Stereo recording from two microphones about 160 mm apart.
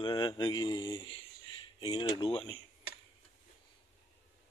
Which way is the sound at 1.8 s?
25° left (ahead or behind).